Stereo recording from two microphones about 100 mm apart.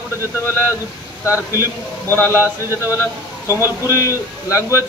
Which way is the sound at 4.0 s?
35° left (ahead or behind).